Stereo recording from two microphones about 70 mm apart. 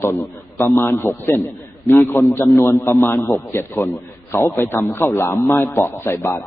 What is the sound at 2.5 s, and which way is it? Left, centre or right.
A man's voice, left.